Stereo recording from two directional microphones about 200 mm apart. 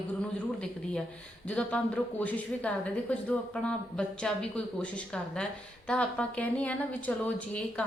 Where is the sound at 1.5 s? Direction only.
5° left (ahead or behind).